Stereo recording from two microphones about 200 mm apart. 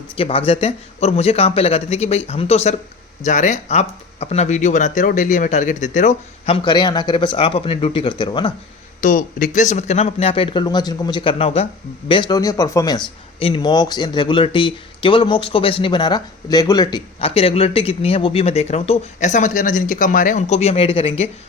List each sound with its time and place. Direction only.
0.2 s speech: 30° left (ahead or behind)
9.0 s speech: 40° left (ahead or behind)